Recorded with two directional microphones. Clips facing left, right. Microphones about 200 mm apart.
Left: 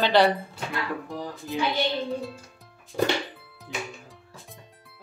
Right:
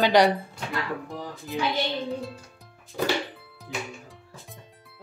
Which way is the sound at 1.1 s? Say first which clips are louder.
Left 2 dB; centre (ahead or behind).